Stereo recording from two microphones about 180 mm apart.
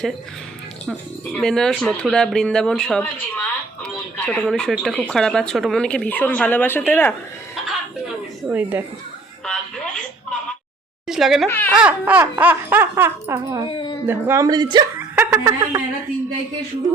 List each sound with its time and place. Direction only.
0.9 s a woman's voice: 5° left (ahead or behind)
7.5 s chuckle: centre (ahead or behind)
9.5 s a sound: 5° left (ahead or behind)
11.1 s speech: centre (ahead or behind)
11.4 s speech: 10° left (ahead or behind)
11.8 s speech: 10° right (ahead or behind)
13.7 s speech: 30° left (ahead or behind)
14.1 s a woman's voice: 15° right (ahead or behind)
14.9 s a woman's voice: 10° right (ahead or behind)